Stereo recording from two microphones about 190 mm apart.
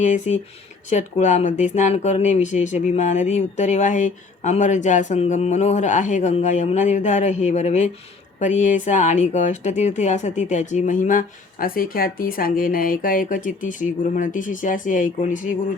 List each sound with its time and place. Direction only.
0.0 s speech: 40° left (ahead or behind)